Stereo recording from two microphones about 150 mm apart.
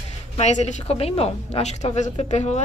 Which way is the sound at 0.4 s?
50° left (ahead or behind).